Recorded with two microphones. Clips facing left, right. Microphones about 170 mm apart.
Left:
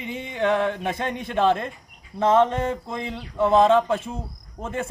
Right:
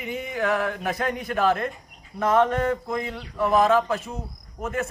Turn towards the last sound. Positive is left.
turn(degrees=30)  # may be behind; listen again after turning